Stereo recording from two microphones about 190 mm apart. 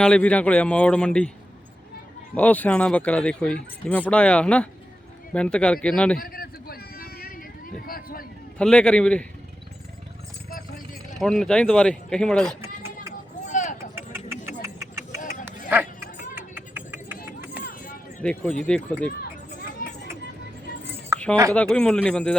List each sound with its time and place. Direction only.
0.0 s speech: 5° left (ahead or behind)
2.3 s speech: 10° left (ahead or behind)
6.1 s a sound: 50° left (ahead or behind)
8.5 s speech: 5° left (ahead or behind)
11.2 s speech: 5° left (ahead or behind)
12.6 s run: 15° right (ahead or behind)
13.4 s vehicle: 40° left (ahead or behind)
13.7 s vehicle: 15° right (ahead or behind)
15.4 s a sound: 10° right (ahead or behind)
16.6 s vehicle: 10° right (ahead or behind)
17.6 s a sound: 50° left (ahead or behind)
18.2 s speech: 5° left (ahead or behind)
19.8 s vehicle: 50° left (ahead or behind)
21.5 s speech: 5° left (ahead or behind)